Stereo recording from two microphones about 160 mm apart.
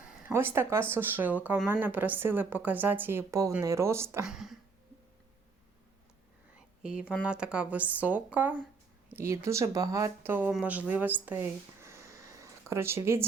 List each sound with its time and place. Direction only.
0.0 s speech: 10° right (ahead or behind)
4.3 s speech: 5° right (ahead or behind)
7.2 s speech: 5° right (ahead or behind)